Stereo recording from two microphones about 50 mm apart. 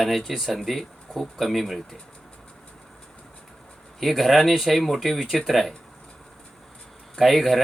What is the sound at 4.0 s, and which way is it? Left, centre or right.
Speech, centre.